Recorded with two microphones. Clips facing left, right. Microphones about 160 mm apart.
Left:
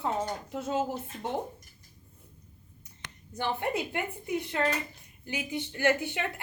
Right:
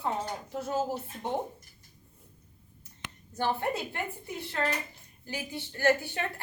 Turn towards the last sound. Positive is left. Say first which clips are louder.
# right 1 dB
turn(degrees=20)  # may be behind; listen again after turning